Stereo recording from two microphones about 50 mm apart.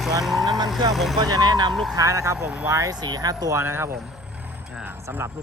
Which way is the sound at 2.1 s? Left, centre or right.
Right.